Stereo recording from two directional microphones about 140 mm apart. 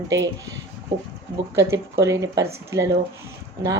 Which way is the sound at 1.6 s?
20° right (ahead or behind).